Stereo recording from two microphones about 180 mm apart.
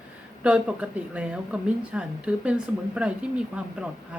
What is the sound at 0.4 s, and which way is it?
A woman's voice, 5° right (ahead or behind).